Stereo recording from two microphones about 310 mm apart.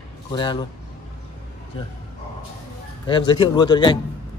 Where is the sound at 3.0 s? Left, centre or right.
Centre.